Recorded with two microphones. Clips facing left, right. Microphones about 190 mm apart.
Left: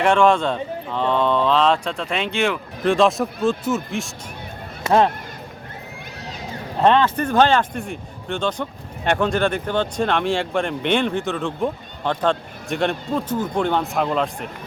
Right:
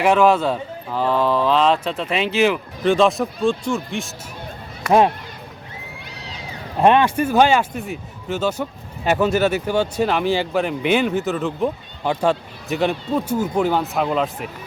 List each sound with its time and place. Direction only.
0.0 s speech: 5° right (ahead or behind)
4.9 s speech: 15° right (ahead or behind)
6.1 s a sound: 50° left (ahead or behind)
6.8 s speech: 15° right (ahead or behind)